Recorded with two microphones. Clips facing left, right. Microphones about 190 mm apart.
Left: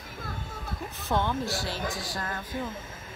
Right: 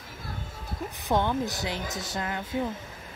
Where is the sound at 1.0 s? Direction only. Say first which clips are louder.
Right 2 dB; 15° right (ahead or behind).